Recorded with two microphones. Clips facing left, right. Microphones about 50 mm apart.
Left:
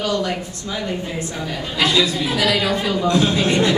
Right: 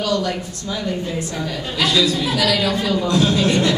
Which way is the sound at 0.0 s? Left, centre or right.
Left.